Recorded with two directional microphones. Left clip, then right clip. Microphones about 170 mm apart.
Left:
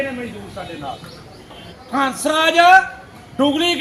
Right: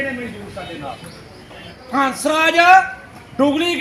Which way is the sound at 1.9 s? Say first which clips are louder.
Right 1 dB; 10° right (ahead or behind).